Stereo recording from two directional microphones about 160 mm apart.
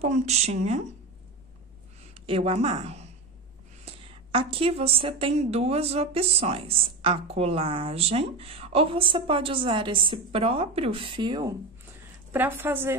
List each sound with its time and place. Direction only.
0.0 s speech: 45° right (ahead or behind)
2.1 s a woman's voice: 35° right (ahead or behind)
12.3 s a woman's voice: 15° right (ahead or behind)